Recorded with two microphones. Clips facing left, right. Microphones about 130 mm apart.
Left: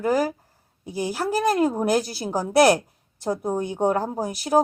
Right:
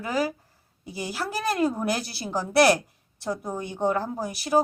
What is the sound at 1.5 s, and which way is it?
Speech, 15° left (ahead or behind).